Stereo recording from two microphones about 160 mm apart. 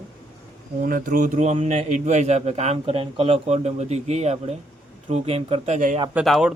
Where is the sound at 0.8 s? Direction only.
60° right (ahead or behind); by 5.8 s 40° right (ahead or behind).